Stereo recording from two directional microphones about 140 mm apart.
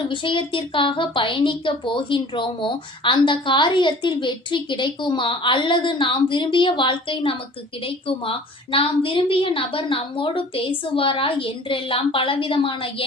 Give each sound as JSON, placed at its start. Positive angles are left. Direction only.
{"t": 0.0, "sound": "a woman's voice", "side_deg": 35}